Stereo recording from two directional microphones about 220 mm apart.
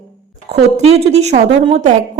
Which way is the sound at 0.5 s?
30° right (ahead or behind).